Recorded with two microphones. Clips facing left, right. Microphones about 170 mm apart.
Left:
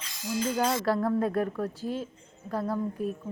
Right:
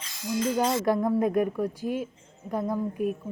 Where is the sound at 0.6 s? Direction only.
15° right (ahead or behind).